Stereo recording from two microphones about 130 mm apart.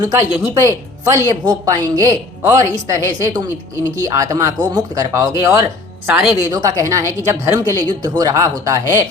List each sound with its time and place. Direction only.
0.0 s speech: 25° right (ahead or behind)
6.1 s a woman's voice: 10° right (ahead or behind)
6.5 s speech: 30° right (ahead or behind)